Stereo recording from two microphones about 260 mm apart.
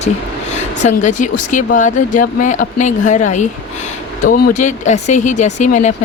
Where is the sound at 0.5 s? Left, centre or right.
Left.